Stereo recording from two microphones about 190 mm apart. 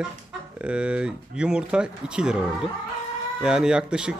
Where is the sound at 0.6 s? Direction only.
5° right (ahead or behind).